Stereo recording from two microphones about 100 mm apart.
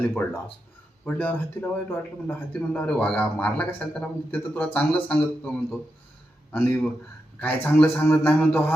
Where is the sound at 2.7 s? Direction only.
10° left (ahead or behind).